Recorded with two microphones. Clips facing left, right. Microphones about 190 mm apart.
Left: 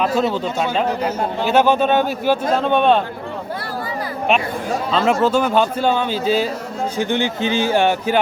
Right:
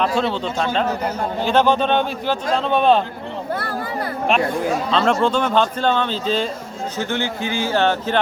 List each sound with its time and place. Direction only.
0.0 s speech: 5° left (ahead or behind)
4.9 s speech: 5° left (ahead or behind)